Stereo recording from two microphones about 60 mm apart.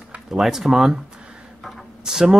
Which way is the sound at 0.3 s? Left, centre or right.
Centre.